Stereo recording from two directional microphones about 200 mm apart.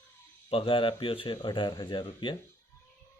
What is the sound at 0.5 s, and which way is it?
A man's voice, 25° left (ahead or behind).